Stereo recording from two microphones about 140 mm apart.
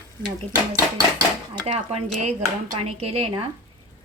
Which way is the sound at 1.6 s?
45° right (ahead or behind).